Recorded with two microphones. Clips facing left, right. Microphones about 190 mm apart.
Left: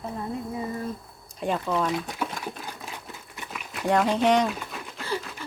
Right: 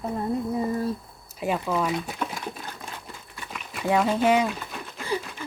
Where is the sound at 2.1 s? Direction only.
5° left (ahead or behind).